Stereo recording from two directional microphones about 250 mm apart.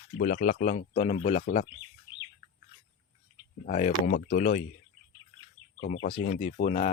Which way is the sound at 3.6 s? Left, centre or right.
Left.